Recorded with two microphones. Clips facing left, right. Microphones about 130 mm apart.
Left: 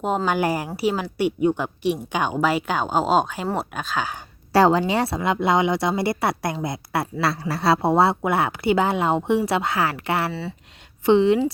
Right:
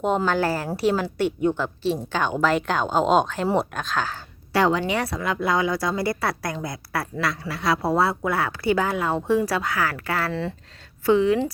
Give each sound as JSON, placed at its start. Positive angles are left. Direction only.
{"t": 0.3, "sound": "a woman's voice", "side_deg": 15}
{"t": 4.5, "sound": "a woman's voice", "side_deg": 35}